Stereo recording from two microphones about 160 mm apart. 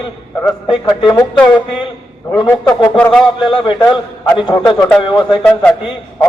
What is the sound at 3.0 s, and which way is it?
Speech, 5° left (ahead or behind).